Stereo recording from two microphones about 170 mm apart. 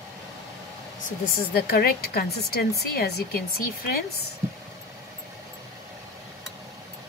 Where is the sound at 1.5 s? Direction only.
65° left (ahead or behind).